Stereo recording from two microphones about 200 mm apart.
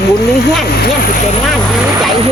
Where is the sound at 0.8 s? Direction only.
50° left (ahead or behind).